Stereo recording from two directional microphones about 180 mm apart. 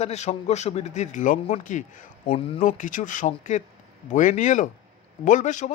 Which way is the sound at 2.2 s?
30° left (ahead or behind).